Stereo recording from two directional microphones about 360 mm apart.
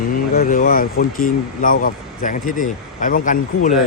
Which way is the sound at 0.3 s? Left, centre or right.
Left.